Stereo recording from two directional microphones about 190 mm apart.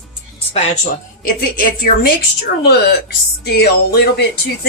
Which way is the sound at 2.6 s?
60° left (ahead or behind).